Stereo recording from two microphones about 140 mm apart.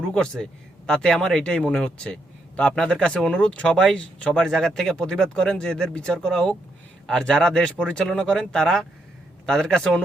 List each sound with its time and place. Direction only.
0.1 s speech: 5° left (ahead or behind)